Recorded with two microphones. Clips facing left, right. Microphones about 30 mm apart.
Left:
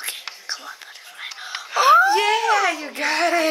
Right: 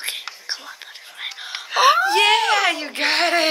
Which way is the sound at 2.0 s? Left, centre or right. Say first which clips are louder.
Right 1 dB; right.